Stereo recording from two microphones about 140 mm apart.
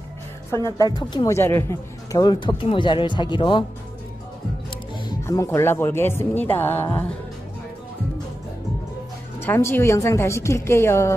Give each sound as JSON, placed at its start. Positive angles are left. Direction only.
{"t": 0.5, "sound": "a woman's voice", "side_deg": 20}
{"t": 1.3, "sound": "a man's voice", "side_deg": 15}
{"t": 5.2, "sound": "speech", "side_deg": 20}
{"t": 9.4, "sound": "a woman's voice", "side_deg": 15}